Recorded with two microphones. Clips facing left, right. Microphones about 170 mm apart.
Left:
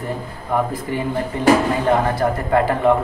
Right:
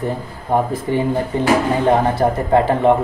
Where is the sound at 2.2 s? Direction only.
25° right (ahead or behind).